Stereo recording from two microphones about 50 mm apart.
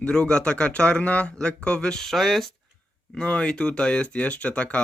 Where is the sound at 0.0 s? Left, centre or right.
Centre.